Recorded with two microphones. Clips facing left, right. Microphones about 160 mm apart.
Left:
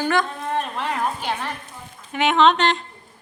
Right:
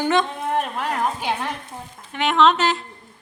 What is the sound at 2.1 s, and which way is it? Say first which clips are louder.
Speech: left 1 dB; centre (ahead or behind).